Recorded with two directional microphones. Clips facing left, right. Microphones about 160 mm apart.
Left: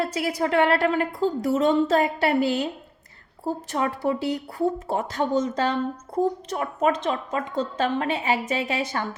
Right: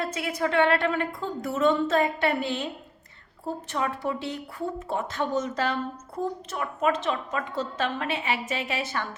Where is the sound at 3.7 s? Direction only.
35° left (ahead or behind).